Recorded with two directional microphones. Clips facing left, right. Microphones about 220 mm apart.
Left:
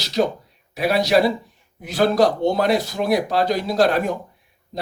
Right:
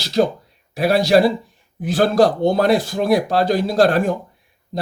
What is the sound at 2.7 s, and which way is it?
Speech, 50° right (ahead or behind).